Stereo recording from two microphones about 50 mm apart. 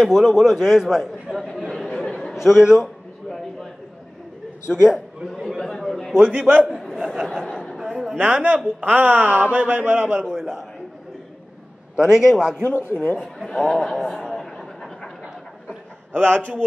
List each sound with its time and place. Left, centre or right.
0.0 s a man's voice: centre
2.0 s chatter: centre
2.3 s a man's voice: centre
4.6 s a man's voice: centre
5.6 s chatter: centre
6.1 s a man's voice: centre
8.2 s speech: right
10.2 s a man's voice: centre
12.1 s a man's voice: centre
12.6 s speech: left
13.6 s a sound: centre
16.1 s speech: right